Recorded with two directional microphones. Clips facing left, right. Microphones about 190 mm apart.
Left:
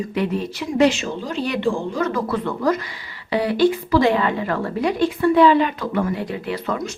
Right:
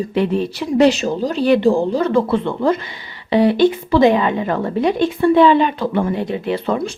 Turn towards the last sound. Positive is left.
turn(degrees=-30)  # may be behind; listen again after turning